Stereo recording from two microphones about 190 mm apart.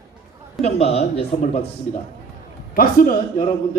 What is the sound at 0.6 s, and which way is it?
A man's voice, 30° left (ahead or behind).